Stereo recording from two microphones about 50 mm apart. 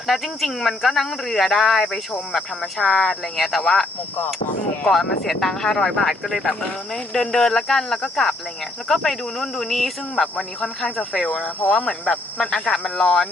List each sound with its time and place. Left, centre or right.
0.1 s speech: centre
3.3 s speech: centre
4.9 s speech: centre
10.8 s speech: centre